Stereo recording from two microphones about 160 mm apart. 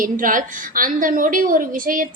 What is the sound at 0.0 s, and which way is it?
A woman's voice, 60° right (ahead or behind).